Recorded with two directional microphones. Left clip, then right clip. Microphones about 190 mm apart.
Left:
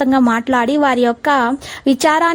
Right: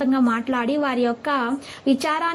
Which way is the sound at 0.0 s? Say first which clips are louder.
Left 7 dB; 45° left (ahead or behind).